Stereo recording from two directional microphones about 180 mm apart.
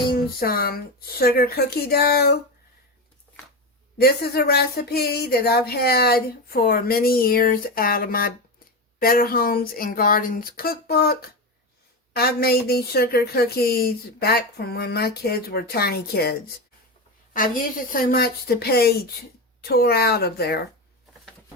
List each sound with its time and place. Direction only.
0.1 s speech: 55° left (ahead or behind)
3.9 s speech: 60° left (ahead or behind)
17.3 s speech: 50° left (ahead or behind)